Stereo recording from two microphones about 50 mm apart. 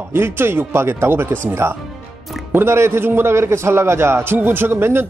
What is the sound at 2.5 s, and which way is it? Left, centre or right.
Speech, right.